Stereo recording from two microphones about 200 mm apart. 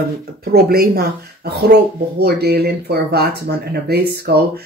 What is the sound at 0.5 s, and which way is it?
Speech, 50° right (ahead or behind).